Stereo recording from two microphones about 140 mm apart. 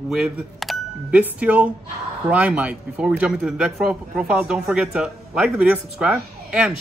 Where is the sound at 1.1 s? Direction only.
10° right (ahead or behind).